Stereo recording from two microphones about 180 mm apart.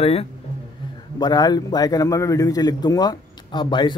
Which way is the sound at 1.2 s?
20° left (ahead or behind).